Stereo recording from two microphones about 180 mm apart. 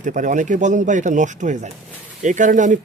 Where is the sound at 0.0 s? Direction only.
45° right (ahead or behind).